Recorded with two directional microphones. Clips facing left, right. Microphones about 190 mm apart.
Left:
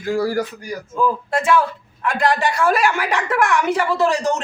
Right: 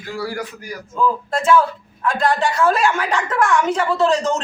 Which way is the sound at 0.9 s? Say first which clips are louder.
Even; 10° left (ahead or behind).